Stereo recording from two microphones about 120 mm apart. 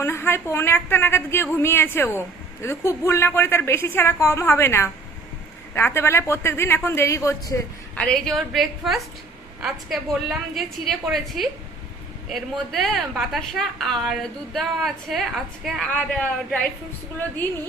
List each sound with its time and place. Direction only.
0.0 s a woman's voice: 20° left (ahead or behind)
7.9 s a woman's voice: 5° left (ahead or behind)
15.9 s speech: 10° left (ahead or behind)